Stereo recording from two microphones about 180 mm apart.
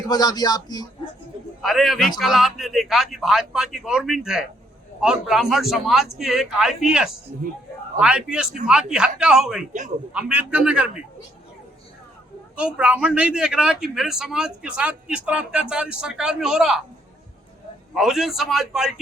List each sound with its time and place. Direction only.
0.1 s speech: 20° left (ahead or behind)
1.6 s a man's voice: centre (ahead or behind)
12.5 s a man's voice: 5° right (ahead or behind)
17.9 s a man's voice: centre (ahead or behind)